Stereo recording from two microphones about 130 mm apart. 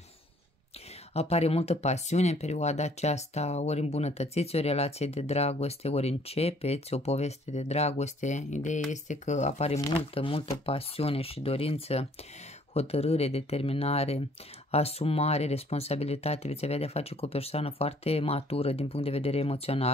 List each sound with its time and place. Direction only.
1.1 s speech: 55° left (ahead or behind)
9.9 s speech: 45° left (ahead or behind)